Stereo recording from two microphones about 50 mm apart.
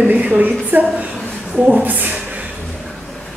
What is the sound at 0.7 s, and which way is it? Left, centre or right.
Speech, right.